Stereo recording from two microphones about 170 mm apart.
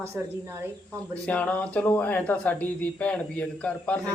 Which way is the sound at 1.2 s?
10° left (ahead or behind).